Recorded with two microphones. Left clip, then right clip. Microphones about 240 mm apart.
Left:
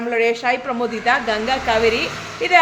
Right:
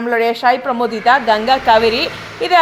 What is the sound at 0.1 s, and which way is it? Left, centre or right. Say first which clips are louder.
A woman's voice: right 5 dB; centre.